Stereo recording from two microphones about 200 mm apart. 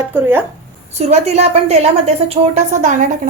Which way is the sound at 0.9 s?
35° right (ahead or behind).